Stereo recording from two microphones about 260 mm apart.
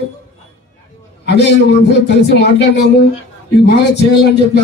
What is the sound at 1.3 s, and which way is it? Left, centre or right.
A man's voice, left.